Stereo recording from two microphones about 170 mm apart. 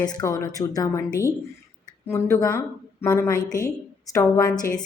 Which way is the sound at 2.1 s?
15° left (ahead or behind).